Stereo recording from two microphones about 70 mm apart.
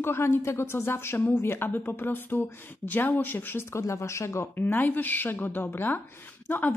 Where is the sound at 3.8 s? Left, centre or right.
Left.